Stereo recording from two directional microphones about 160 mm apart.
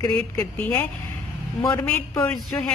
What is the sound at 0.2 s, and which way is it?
Speech, 5° left (ahead or behind).